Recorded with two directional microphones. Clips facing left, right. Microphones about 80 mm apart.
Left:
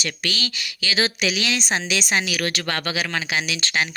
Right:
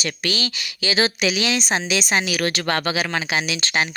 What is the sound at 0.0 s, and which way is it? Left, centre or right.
Speech, right.